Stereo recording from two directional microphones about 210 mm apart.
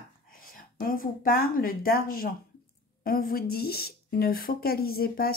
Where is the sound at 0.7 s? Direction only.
40° left (ahead or behind).